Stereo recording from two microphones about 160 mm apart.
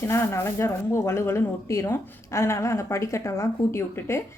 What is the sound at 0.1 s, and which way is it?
Speech, 15° left (ahead or behind).